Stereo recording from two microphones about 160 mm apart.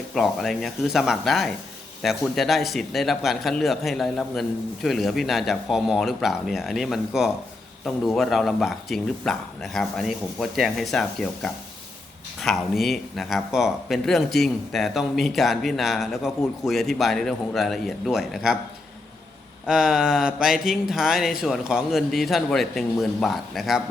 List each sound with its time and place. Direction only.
0.1 s speech: centre (ahead or behind)
19.6 s speech: 5° right (ahead or behind)